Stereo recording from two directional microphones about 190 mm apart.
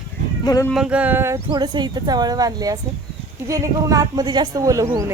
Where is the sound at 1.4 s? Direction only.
20° right (ahead or behind).